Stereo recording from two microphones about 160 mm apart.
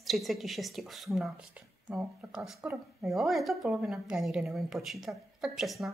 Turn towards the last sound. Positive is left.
turn(degrees=0)  # may be behind; listen again after turning